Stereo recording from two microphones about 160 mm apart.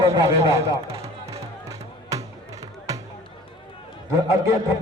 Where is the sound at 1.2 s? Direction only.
20° right (ahead or behind).